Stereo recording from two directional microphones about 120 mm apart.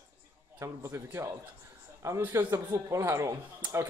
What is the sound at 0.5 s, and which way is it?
A man's voice, 25° right (ahead or behind).